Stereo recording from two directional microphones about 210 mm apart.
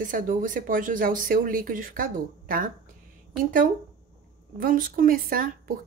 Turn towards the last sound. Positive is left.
turn(degrees=-45)  # may be behind; listen again after turning